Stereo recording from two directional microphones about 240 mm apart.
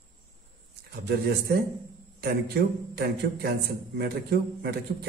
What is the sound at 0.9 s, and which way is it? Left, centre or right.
A man's voice, right.